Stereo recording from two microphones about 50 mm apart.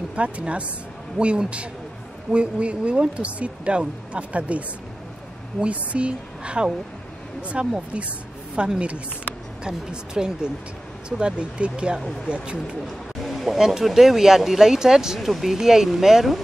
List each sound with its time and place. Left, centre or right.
0.1 s speech: right
12.8 s speech: centre